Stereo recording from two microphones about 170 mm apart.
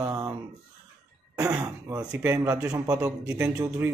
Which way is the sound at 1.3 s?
20° right (ahead or behind).